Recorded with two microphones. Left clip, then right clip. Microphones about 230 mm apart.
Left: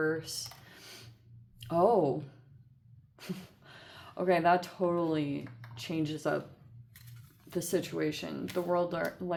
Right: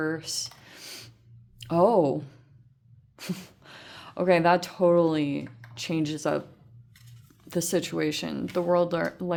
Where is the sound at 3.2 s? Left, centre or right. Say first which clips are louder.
Right 6 dB; right.